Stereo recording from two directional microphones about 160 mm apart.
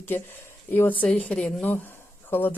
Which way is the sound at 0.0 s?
15° left (ahead or behind).